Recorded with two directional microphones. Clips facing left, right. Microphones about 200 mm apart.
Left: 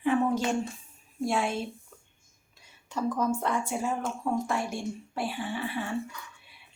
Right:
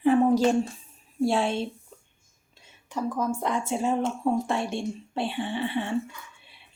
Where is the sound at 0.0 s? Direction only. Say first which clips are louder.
Right 6 dB; 35° right (ahead or behind).